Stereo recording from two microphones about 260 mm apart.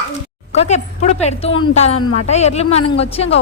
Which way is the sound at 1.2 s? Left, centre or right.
Left.